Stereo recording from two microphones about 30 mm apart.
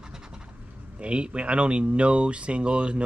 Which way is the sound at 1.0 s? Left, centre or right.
Right.